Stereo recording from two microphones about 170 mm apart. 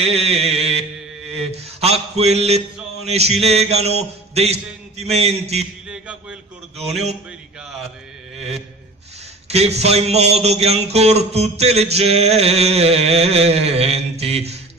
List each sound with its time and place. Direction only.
0.0 s speech: 35° right (ahead or behind)
6.8 s speech: 40° right (ahead or behind)
8.4 s a sound: 40° right (ahead or behind)
9.5 s speech: 40° right (ahead or behind)